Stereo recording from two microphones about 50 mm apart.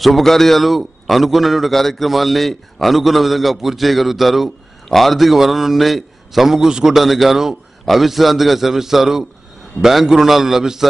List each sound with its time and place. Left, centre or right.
0.0 s a man's voice: centre